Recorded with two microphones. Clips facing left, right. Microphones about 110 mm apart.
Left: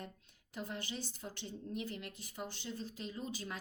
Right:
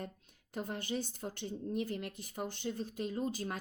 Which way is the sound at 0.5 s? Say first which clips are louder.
Right 5 dB; 50° right (ahead or behind).